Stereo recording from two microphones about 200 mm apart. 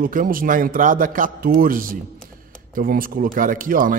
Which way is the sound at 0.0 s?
45° right (ahead or behind).